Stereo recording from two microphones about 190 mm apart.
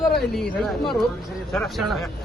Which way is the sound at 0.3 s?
Centre (ahead or behind).